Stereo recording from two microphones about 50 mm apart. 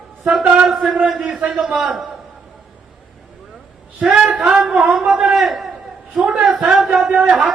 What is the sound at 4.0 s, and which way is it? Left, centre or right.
Speech, centre.